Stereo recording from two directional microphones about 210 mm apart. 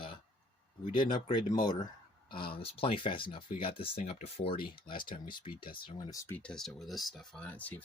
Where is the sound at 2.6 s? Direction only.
25° left (ahead or behind).